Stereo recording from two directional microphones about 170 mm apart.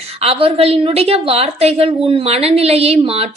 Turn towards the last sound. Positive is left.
turn(degrees=-35)  # may be behind; listen again after turning